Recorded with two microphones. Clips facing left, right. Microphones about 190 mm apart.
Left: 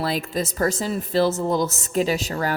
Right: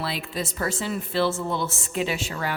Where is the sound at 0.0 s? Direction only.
45° left (ahead or behind).